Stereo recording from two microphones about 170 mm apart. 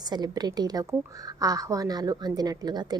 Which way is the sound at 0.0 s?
25° right (ahead or behind).